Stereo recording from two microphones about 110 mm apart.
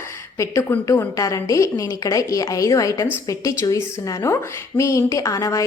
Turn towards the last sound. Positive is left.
turn(degrees=30)  # may be behind; listen again after turning